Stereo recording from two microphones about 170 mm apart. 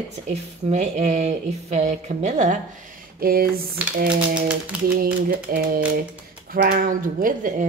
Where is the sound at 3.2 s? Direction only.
60° right (ahead or behind).